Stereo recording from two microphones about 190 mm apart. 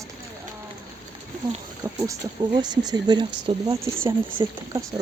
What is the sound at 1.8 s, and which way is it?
Speech, 15° right (ahead or behind).